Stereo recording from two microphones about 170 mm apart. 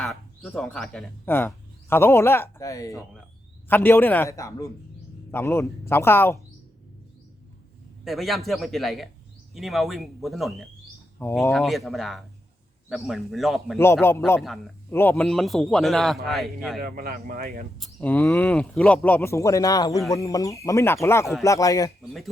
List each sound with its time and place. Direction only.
0.0 s speech: 5° left (ahead or behind)
8.0 s a man's voice: centre (ahead or behind)
11.2 s speech: 15° left (ahead or behind)
11.5 s a man's voice: centre (ahead or behind)
13.7 s speech: 15° left (ahead or behind)
15.1 s a man's voice: centre (ahead or behind)
16.8 s speech: 60° right (ahead or behind)
17.7 s speech: 5° left (ahead or behind); by 21.9 s 20° left (ahead or behind)